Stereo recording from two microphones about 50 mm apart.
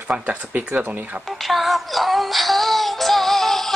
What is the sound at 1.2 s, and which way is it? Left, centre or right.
Music, centre.